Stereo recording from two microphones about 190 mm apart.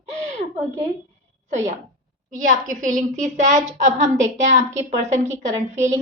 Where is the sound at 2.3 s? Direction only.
40° right (ahead or behind).